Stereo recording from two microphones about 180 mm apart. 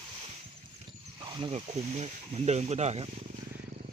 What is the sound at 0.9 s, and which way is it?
Speech, 25° right (ahead or behind).